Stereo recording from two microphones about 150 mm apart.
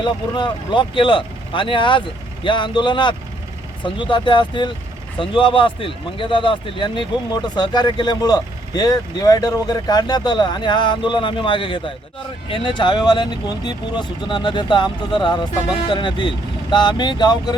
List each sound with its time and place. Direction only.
0.0 s speech: 30° left (ahead or behind)